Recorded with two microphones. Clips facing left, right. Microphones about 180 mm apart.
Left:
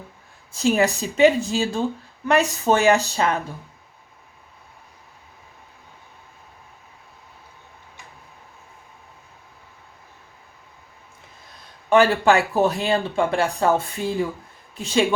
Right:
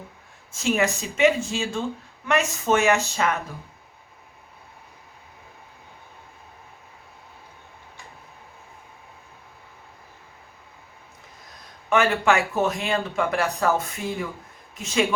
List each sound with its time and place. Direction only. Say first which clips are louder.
0.5 s speech: left 4 dB; 35° left (ahead or behind)
11.9 s speech: left 4 dB; 35° left (ahead or behind)